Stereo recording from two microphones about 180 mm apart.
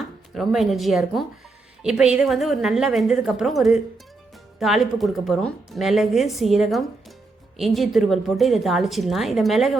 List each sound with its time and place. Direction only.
0.3 s speech: centre (ahead or behind)